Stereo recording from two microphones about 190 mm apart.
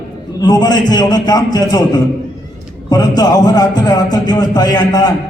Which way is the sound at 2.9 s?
20° left (ahead or behind).